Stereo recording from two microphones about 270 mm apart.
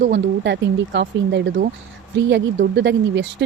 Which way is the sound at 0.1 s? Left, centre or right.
Right.